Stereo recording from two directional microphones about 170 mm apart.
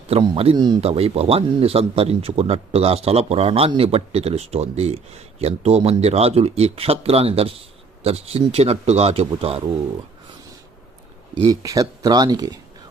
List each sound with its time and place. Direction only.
0.1 s speech: 35° right (ahead or behind)
11.4 s speech: 20° right (ahead or behind)